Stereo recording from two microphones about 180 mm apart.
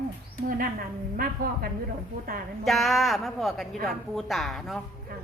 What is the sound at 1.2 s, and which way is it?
Speech, 55° right (ahead or behind).